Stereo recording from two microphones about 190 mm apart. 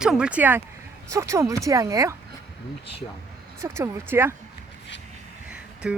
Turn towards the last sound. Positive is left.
turn(degrees=-5)  # may be behind; listen again after turning